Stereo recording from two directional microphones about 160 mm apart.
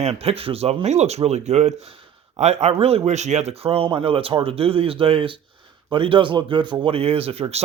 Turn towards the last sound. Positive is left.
turn(degrees=-40)  # may be behind; listen again after turning